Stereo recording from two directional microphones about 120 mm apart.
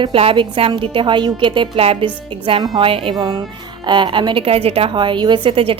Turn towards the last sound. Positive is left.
turn(degrees=-50)  # may be behind; listen again after turning